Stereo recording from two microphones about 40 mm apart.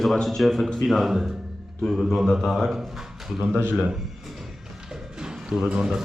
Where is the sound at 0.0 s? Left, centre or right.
Centre.